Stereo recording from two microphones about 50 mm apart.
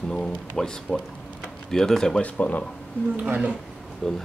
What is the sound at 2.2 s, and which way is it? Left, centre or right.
Speech, left.